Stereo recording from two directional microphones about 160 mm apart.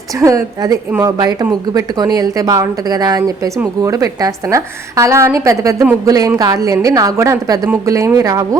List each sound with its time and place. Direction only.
0.1 s a woman's voice: 20° right (ahead or behind)
1.2 s a woman's voice: 25° right (ahead or behind)